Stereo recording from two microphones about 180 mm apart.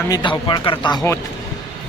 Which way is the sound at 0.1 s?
25° left (ahead or behind).